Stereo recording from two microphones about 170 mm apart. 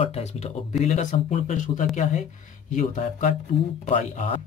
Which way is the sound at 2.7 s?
45° left (ahead or behind).